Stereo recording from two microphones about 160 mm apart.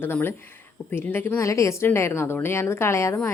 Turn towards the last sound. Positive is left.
turn(degrees=15)  # may be behind; listen again after turning